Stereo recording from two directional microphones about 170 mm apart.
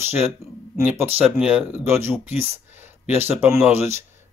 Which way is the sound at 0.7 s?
15° right (ahead or behind).